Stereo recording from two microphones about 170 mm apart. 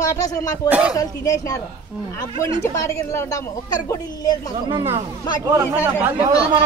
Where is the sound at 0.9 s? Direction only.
20° left (ahead or behind).